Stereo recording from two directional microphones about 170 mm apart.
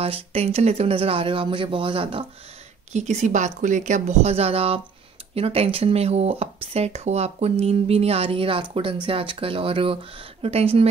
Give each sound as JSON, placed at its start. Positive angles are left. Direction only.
{"t": 0.0, "sound": "speech", "side_deg": -35}
{"t": 2.9, "sound": "speech", "side_deg": -45}